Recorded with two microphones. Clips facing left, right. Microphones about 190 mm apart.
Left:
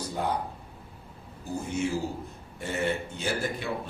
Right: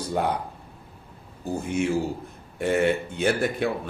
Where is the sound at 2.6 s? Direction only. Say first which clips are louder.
Right 7 dB; 65° right (ahead or behind).